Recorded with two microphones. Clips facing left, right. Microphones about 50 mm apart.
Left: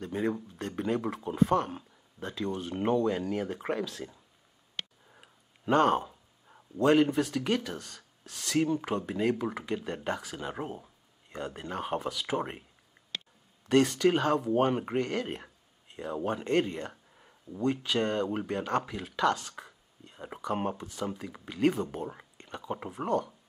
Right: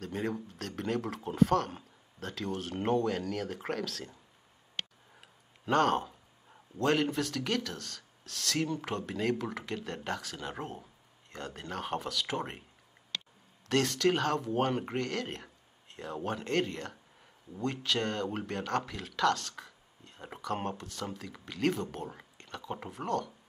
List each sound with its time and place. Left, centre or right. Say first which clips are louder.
0.0 s speech: left 4 dB; centre
5.2 s speech: left 5 dB; centre
13.7 s speech: left 4 dB; centre
21.9 s a sound: left 4 dB; centre
22.8 s speech: left 4 dB; centre